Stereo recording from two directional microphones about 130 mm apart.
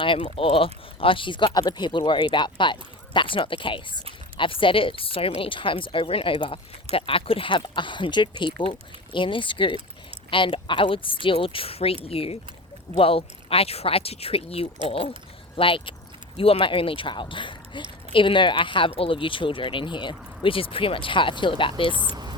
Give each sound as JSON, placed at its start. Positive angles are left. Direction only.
{"t": 0.2, "sound": "a woman's voice", "side_deg": 45}
{"t": 21.9, "sound": "a woman's voice", "side_deg": -35}